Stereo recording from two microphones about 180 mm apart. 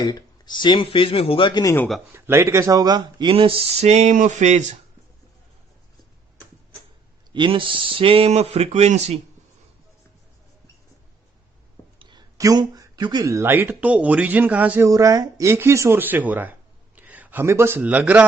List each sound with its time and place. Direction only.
0.0 s speech: 25° left (ahead or behind)
2.1 s speech: 15° right (ahead or behind); by 4.8 s 40° right (ahead or behind)
7.3 s speech: 30° right (ahead or behind)
11.9 s speech: 25° right (ahead or behind); by 18.3 s 10° right (ahead or behind)